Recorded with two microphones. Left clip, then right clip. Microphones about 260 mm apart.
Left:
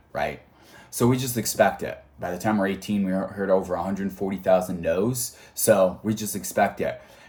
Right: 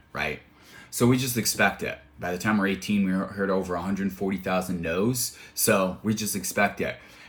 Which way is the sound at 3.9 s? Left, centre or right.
Centre.